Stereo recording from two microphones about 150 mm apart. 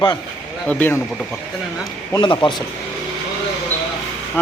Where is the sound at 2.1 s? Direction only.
30° left (ahead or behind).